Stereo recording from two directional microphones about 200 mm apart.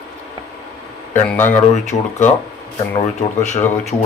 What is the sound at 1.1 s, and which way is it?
Speech, 10° left (ahead or behind).